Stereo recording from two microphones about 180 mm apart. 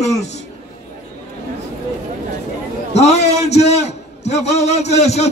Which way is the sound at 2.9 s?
35° left (ahead or behind).